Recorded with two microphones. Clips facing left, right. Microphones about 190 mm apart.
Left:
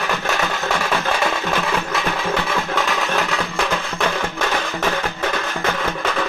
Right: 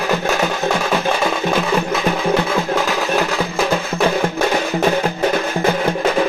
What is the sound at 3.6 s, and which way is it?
Music, 35° right (ahead or behind).